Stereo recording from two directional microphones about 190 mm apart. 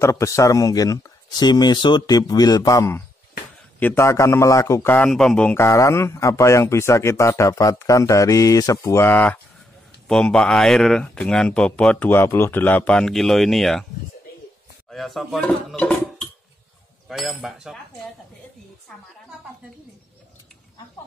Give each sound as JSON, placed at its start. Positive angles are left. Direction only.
{"t": 0.0, "sound": "a man's voice", "side_deg": 15}
{"t": 14.9, "sound": "speech", "side_deg": 0}